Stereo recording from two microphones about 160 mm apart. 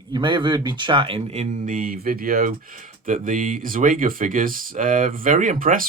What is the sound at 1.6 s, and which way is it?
Speech, 60° right (ahead or behind).